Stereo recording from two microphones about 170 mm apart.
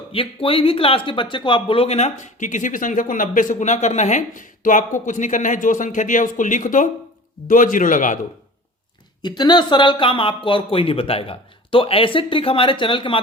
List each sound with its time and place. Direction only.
0.1 s speech: 35° left (ahead or behind); by 8.2 s 50° left (ahead or behind)
9.2 s speech: 25° left (ahead or behind)